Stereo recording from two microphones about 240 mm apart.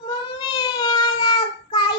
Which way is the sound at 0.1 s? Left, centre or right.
Centre.